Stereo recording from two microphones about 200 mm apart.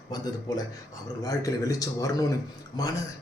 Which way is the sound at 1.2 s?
15° left (ahead or behind).